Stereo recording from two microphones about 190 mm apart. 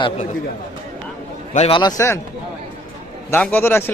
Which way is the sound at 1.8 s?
20° left (ahead or behind).